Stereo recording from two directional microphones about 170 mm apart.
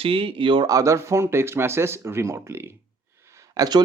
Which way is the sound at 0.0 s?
30° right (ahead or behind).